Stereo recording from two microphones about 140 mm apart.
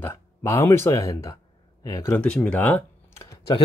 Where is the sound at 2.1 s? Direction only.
10° left (ahead or behind).